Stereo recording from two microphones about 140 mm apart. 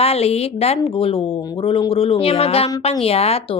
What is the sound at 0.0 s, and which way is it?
A woman's voice, 45° left (ahead or behind).